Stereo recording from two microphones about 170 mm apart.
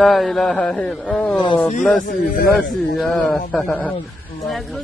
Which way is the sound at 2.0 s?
50° left (ahead or behind).